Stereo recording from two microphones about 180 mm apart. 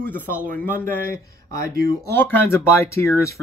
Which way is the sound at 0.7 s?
10° left (ahead or behind).